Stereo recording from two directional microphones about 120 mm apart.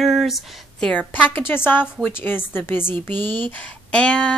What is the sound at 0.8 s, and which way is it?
Speech, 10° left (ahead or behind).